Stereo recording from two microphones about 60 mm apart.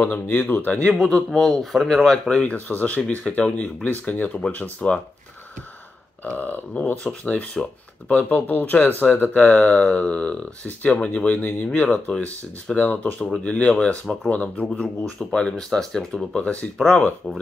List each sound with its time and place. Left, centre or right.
0.0 s speech: left
1.0 s a man's voice: centre
2.4 s speech: left
6.2 s a man's voice: left; by 16.3 s centre